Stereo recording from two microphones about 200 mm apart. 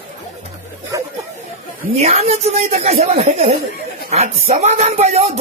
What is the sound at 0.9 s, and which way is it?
Chatter, 15° right (ahead or behind).